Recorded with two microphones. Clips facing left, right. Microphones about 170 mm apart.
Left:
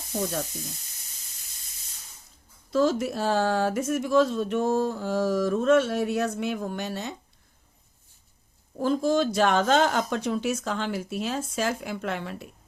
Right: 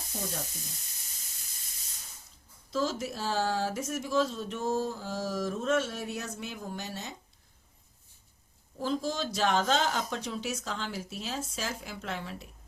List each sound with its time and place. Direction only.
0.1 s sizzle: 75° left (ahead or behind)
2.6 s speech: 55° left (ahead or behind)
8.8 s speech: 55° left (ahead or behind)